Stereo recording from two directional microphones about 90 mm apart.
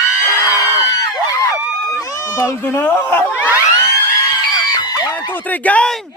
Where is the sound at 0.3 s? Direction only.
40° left (ahead or behind).